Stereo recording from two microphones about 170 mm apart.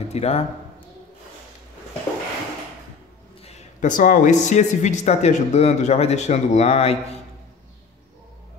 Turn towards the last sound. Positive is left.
turn(degrees=40)  # may be behind; listen again after turning